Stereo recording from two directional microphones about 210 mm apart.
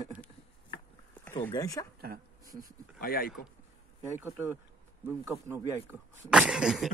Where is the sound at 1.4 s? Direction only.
15° left (ahead or behind).